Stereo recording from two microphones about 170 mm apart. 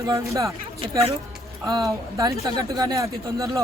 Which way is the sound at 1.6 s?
20° right (ahead or behind).